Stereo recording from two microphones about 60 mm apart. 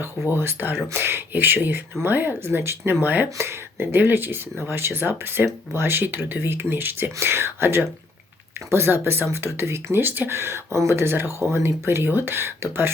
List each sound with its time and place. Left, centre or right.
0.3 s speech: right